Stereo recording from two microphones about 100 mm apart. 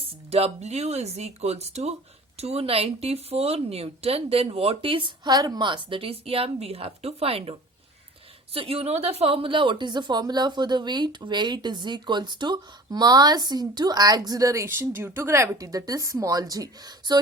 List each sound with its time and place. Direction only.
0.0 s a woman's voice: 90° right
8.5 s speech: 75° right (ahead or behind); by 17.2 s 40° right (ahead or behind)